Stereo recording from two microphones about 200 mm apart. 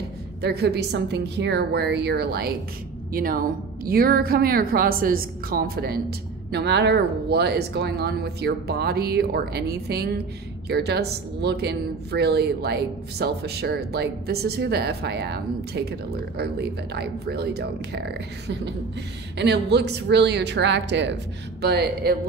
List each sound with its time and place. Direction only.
0.4 s a woman's voice: 55° right (ahead or behind)